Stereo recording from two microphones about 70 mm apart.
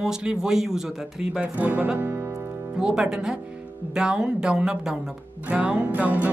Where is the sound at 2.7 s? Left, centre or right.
Centre.